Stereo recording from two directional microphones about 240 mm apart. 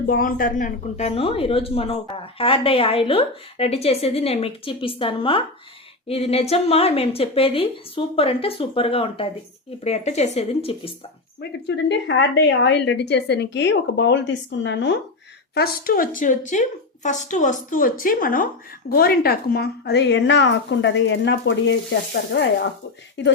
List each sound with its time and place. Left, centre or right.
0.1 s a woman's voice: left
11.3 s a woman's voice: left